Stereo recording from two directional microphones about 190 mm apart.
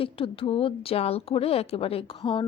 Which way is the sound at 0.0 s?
30° left (ahead or behind).